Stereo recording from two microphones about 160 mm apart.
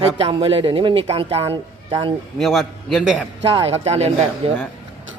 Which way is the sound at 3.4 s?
35° right (ahead or behind).